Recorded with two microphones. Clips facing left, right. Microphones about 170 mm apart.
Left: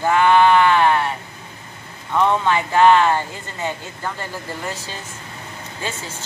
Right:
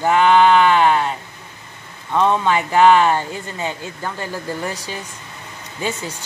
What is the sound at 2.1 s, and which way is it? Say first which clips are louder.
A woman's voice: right 1 dB; 20° right (ahead or behind).